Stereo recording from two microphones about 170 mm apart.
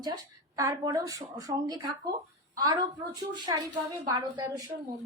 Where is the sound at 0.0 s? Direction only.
20° right (ahead or behind).